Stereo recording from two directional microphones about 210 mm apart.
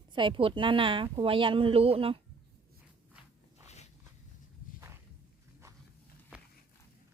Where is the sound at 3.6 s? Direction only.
30° left (ahead or behind).